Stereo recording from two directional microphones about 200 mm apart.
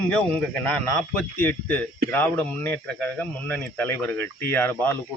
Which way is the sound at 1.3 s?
10° left (ahead or behind).